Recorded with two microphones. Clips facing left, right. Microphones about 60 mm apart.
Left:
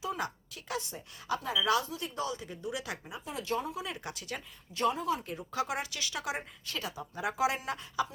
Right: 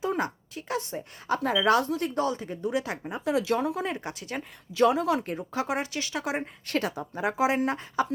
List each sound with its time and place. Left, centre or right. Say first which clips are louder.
0.0 s a woman's voice: right 7 dB; right
1.4 s speech: right 7 dB; right
3.2 s speech: right 9 dB; right
3.8 s speech: right 7 dB; right
4.7 s speech: right 8 dB; right
5.2 s speech: right 4 dB; right
6.7 s speech: right 11 dB; right
7.1 s speech: right 5 dB; right